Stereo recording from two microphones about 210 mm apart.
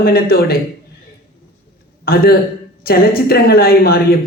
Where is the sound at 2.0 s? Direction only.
45° left (ahead or behind).